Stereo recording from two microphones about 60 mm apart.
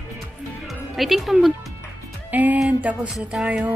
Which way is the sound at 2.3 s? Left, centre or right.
Right.